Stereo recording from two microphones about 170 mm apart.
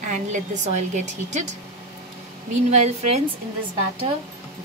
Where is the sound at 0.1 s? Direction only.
45° right (ahead or behind).